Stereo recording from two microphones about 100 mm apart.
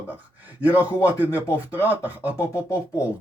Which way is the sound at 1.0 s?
15° right (ahead or behind).